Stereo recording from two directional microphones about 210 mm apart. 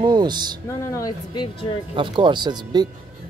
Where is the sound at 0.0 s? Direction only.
20° right (ahead or behind).